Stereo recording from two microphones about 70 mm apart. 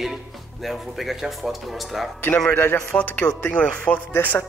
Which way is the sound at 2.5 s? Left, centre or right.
Left.